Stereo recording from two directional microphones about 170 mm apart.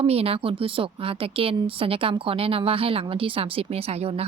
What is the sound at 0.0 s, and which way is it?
Speech, 35° right (ahead or behind).